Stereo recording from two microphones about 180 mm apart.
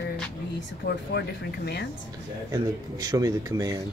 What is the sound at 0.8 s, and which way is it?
Speech, 65° left (ahead or behind).